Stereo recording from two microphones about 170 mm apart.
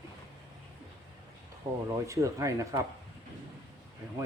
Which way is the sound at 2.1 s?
20° right (ahead or behind).